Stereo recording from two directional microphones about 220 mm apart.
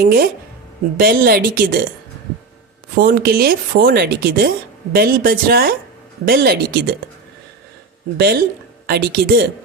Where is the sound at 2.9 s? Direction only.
40° right (ahead or behind).